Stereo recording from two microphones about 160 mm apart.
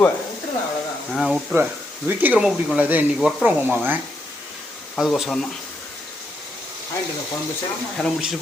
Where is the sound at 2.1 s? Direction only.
10° right (ahead or behind).